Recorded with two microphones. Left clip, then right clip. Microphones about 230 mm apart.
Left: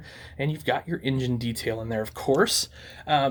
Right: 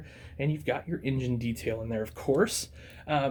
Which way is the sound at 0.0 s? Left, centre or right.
Left.